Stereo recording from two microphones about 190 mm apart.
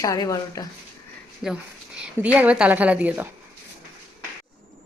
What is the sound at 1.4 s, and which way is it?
A woman's voice, 5° right (ahead or behind).